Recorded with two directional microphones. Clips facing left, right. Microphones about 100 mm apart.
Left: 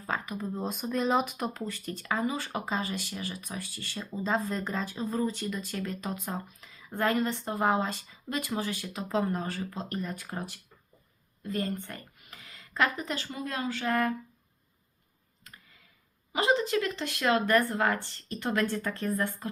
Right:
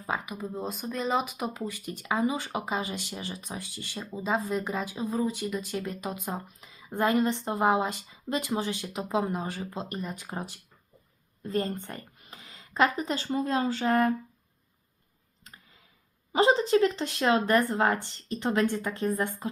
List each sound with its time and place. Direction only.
0.0 s speech: 10° right (ahead or behind)
11.4 s speech: 30° right (ahead or behind)
16.3 s speech: 30° right (ahead or behind)
18.6 s speech: 15° right (ahead or behind)